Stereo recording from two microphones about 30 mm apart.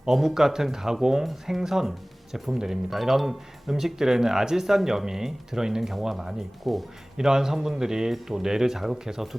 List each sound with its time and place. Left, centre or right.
0.1 s speech: centre
6.7 s speech: centre
7.2 s speech: centre